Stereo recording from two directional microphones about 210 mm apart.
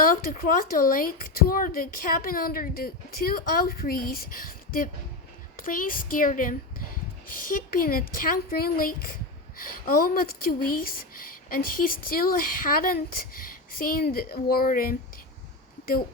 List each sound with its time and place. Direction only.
0.0 s a woman's voice: 40° left (ahead or behind)